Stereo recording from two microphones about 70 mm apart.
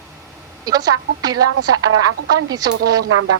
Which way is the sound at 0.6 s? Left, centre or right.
Right.